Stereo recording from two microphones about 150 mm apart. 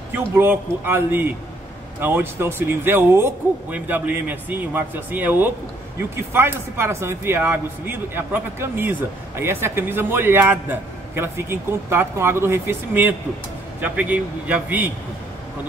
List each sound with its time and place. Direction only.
0.1 s speech: 15° right (ahead or behind)